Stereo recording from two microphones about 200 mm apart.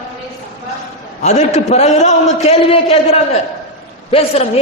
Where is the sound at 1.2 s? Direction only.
35° left (ahead or behind).